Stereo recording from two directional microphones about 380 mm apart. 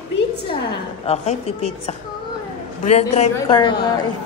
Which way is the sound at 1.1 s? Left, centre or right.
Centre.